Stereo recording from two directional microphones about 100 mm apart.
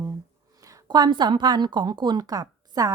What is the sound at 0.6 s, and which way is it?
A woman's voice, 40° right (ahead or behind).